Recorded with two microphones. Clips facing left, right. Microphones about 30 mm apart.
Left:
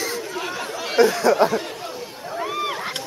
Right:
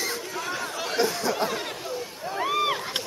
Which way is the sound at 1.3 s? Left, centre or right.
Left.